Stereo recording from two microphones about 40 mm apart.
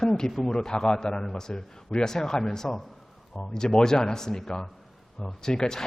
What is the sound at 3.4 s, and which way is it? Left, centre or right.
A man's voice, centre.